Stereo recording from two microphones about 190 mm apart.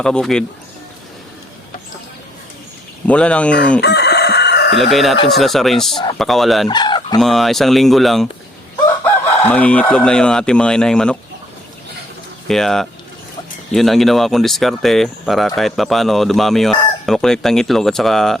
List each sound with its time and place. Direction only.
0.0 s speech: 5° left (ahead or behind)
3.1 s speech: 5° left (ahead or behind)
3.8 s chicken: 60° left (ahead or behind)
4.8 s speech: centre (ahead or behind)
6.7 s fowl: 25° left (ahead or behind)
7.2 s speech: centre (ahead or behind)
9.4 s speech: 10° left (ahead or behind)
12.5 s speech: centre (ahead or behind)